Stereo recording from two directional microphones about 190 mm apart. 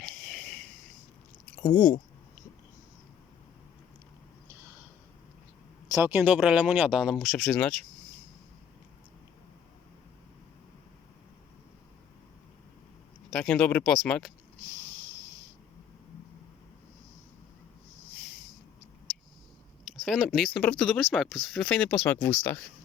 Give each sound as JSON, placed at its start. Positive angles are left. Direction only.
{"t": 0.0, "sound": "a sound", "side_deg": 5}
{"t": 1.6, "sound": "speech", "side_deg": 20}
{"t": 5.9, "sound": "speech", "side_deg": -10}
{"t": 13.3, "sound": "speech", "side_deg": 5}
{"t": 20.0, "sound": "speech", "side_deg": 0}